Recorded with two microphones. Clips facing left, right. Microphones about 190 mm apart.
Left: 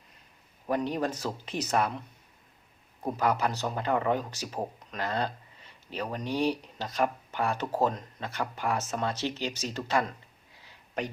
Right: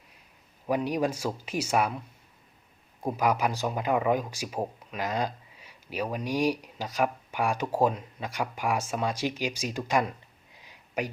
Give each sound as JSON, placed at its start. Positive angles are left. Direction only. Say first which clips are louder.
{"t": 0.7, "sound": "speech", "louder": "right 2 dB", "side_deg": -10}
{"t": 3.0, "sound": "speech", "louder": "right 1 dB", "side_deg": -10}
{"t": 10.5, "sound": "a sound", "louder": "right 2 dB", "side_deg": -15}